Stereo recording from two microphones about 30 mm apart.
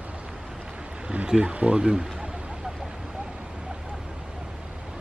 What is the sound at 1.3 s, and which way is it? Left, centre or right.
Speech, right.